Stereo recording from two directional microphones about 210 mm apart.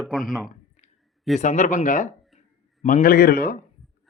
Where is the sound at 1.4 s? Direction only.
35° left (ahead or behind).